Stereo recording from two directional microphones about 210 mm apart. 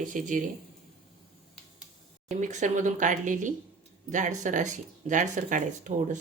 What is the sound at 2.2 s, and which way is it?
Speech, 35° right (ahead or behind).